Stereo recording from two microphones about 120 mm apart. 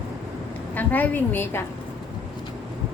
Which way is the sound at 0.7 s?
15° left (ahead or behind).